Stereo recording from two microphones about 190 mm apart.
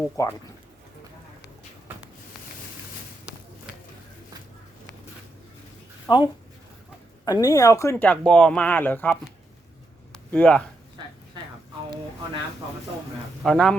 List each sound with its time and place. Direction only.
0.2 s speech: 15° left (ahead or behind)
6.1 s speech: 25° left (ahead or behind)
7.3 s speech: 20° left (ahead or behind)
10.1 s a sound: 5° left (ahead or behind)
13.4 s speech: centre (ahead or behind)